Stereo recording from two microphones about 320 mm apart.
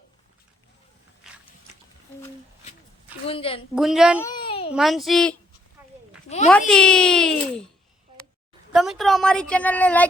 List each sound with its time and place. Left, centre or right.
1.2 s a sound: centre
3.2 s a woman's voice: centre
3.8 s a woman's voice: centre
4.3 s babbling: centre
4.7 s a woman's voice: centre
6.2 s speech: left
6.5 s a woman's voice: centre
8.7 s a woman's voice: centre